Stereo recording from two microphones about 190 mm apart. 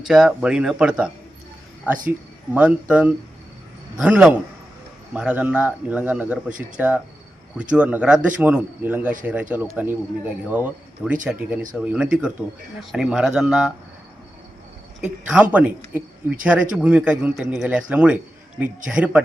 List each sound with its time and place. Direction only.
0.1 s speech: centre (ahead or behind)
6.5 s speech: 45° right (ahead or behind)
6.7 s speech: 5° right (ahead or behind)
15.0 s speech: 5° right (ahead or behind)